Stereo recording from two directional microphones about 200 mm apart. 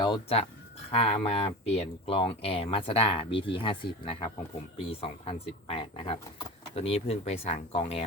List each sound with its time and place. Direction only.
0.0 s speech: 25° left (ahead or behind)